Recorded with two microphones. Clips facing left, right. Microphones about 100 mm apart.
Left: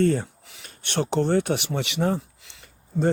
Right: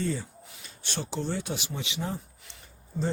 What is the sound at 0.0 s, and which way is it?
Speech, 60° left (ahead or behind).